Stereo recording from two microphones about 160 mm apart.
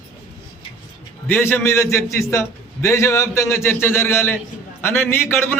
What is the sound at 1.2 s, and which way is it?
A man's voice, 15° left (ahead or behind).